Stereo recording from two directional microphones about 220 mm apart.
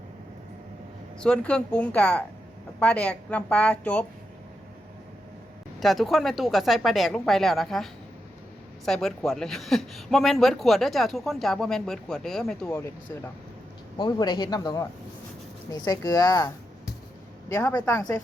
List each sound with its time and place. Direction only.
1.2 s speech: 5° left (ahead or behind)
5.8 s speech: centre (ahead or behind)